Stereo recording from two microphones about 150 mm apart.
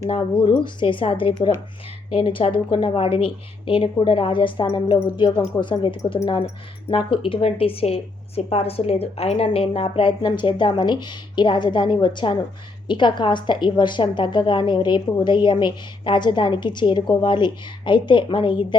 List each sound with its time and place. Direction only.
0.6 s a woman's voice: 35° left (ahead or behind)